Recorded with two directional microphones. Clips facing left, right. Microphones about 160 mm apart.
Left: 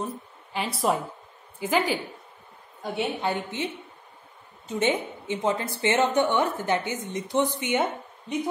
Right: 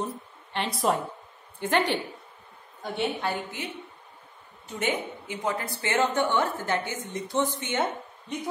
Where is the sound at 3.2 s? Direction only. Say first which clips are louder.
Left 3 dB; 20° left (ahead or behind).